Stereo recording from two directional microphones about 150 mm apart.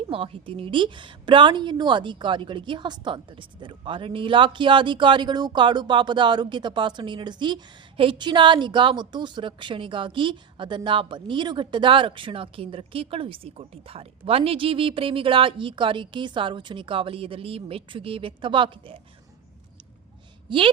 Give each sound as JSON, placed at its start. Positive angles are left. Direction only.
{"t": 0.1, "sound": "a woman's voice", "side_deg": -35}
{"t": 20.5, "sound": "a woman's voice", "side_deg": -35}